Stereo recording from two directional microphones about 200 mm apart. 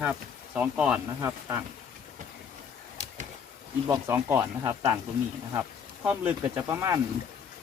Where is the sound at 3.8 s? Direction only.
15° right (ahead or behind).